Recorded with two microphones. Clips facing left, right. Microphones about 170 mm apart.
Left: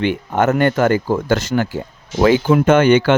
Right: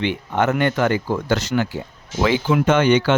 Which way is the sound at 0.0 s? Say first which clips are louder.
Left 4 dB; 45° left (ahead or behind).